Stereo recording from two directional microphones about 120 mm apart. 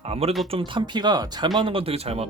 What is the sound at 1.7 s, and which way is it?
Speech, 50° right (ahead or behind).